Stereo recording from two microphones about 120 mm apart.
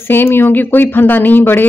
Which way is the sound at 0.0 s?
20° left (ahead or behind).